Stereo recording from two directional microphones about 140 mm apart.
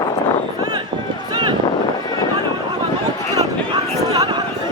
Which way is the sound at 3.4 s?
25° right (ahead or behind).